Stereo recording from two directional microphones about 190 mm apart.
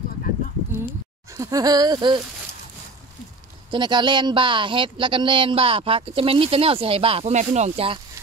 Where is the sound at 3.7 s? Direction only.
25° right (ahead or behind).